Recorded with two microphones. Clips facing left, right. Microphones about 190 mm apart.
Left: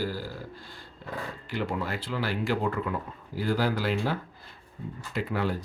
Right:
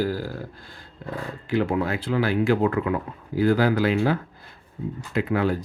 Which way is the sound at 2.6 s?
80° right.